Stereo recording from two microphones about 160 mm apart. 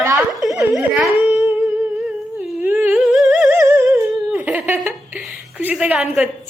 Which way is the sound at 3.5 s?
15° right (ahead or behind).